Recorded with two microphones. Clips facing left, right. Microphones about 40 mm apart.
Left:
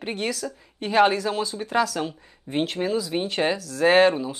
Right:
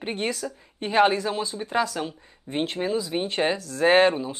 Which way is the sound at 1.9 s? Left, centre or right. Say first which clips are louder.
Left 2 dB; centre.